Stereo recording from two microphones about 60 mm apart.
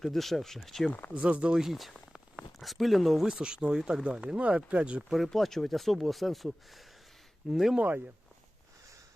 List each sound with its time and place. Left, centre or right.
0.0 s speech: centre
1.1 s speech: centre
1.5 s speech: centre
5.0 s speech: centre
7.8 s speech: right